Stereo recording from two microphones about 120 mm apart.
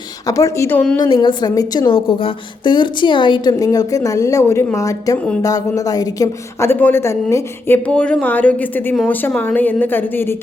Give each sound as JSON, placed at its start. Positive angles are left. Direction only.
{"t": 0.3, "sound": "speech", "side_deg": 30}
{"t": 1.0, "sound": "a woman's voice", "side_deg": 40}
{"t": 1.9, "sound": "a woman's voice", "side_deg": 50}
{"t": 7.9, "sound": "speech", "side_deg": 10}